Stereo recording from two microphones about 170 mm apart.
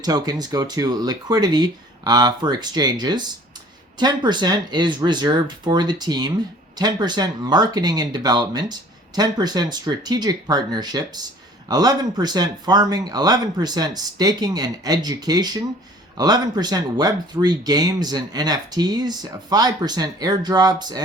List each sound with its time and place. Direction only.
0.0 s speech: 25° right (ahead or behind)